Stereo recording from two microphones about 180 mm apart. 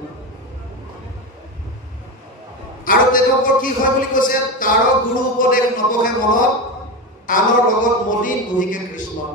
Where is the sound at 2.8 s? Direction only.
50° left (ahead or behind).